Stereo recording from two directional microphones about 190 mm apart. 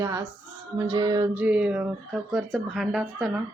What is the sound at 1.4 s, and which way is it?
Speech, 5° right (ahead or behind).